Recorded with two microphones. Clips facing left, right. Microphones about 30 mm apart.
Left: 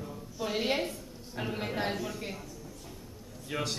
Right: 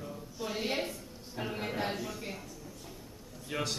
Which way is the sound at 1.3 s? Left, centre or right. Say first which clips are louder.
Left 2 dB; centre.